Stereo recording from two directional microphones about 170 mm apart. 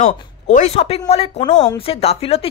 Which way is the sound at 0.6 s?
35° left (ahead or behind).